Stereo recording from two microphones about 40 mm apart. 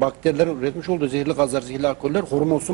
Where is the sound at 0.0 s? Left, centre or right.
Centre.